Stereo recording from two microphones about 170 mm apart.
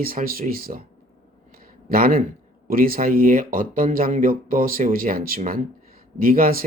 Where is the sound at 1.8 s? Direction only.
60° right (ahead or behind).